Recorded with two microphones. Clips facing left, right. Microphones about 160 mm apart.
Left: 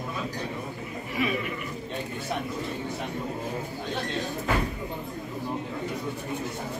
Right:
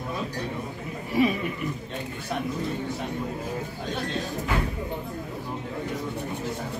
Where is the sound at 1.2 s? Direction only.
35° right (ahead or behind).